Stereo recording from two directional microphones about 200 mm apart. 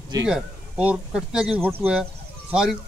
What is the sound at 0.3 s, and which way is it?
Speech, 5° right (ahead or behind).